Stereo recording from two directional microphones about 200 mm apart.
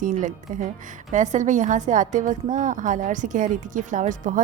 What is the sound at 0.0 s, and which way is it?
A woman's voice, 40° right (ahead or behind).